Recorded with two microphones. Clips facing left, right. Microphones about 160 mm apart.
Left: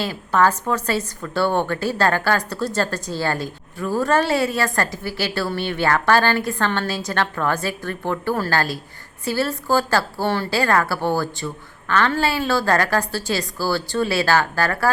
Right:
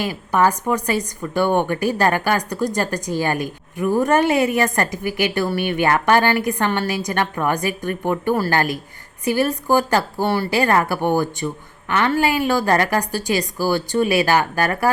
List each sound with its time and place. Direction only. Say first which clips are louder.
0.0 s a woman's voice: right 1 dB; 15° right (ahead or behind)